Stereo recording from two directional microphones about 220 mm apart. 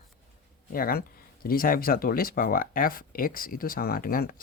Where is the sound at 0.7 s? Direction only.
40° left (ahead or behind).